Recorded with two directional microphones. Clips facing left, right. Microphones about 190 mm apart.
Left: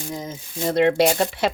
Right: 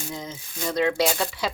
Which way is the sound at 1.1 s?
60° left (ahead or behind).